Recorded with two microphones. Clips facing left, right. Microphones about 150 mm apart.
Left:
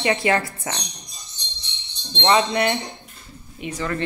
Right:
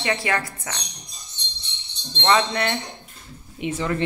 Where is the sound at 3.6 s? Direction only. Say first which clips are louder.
Right 2 dB; 20° right (ahead or behind).